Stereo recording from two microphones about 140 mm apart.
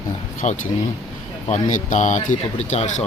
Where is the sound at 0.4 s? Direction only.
55° left (ahead or behind).